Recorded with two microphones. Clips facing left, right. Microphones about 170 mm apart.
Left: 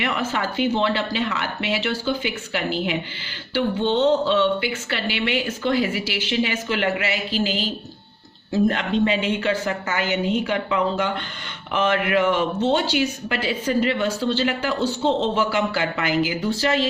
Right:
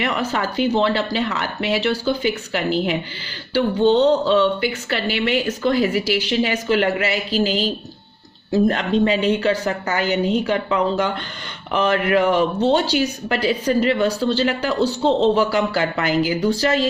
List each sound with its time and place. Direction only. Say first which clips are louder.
0.0 s speech: right 2 dB; 40° right (ahead or behind)